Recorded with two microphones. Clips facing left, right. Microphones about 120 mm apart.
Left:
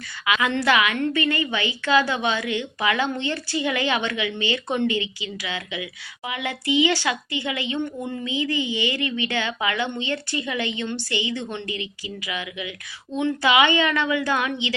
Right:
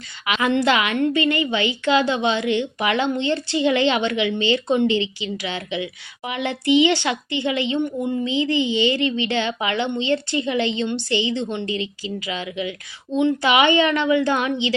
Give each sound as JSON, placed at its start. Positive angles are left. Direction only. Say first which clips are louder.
{"t": 0.3, "sound": "a woman's voice", "louder": "right 2 dB", "side_deg": -25}